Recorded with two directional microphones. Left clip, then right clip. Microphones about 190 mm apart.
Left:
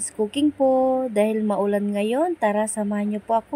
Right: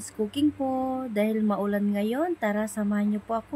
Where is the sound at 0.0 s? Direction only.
20° left (ahead or behind).